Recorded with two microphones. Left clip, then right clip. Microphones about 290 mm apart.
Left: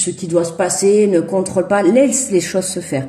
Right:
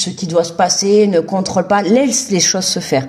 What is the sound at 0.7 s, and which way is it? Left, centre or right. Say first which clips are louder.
Speech: left 1 dB; right.